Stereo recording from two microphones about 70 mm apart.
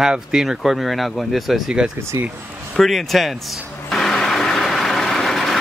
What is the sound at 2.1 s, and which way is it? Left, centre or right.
Speech, right.